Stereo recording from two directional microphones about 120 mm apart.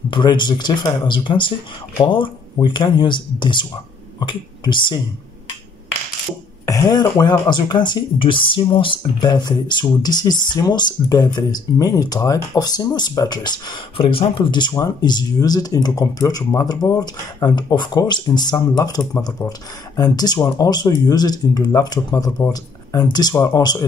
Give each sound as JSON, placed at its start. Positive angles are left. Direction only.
{"t": 0.1, "sound": "speech", "side_deg": 40}
{"t": 6.6, "sound": "speech", "side_deg": 30}